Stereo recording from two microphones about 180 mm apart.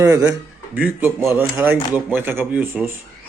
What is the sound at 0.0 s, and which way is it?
A man's voice, 15° right (ahead or behind).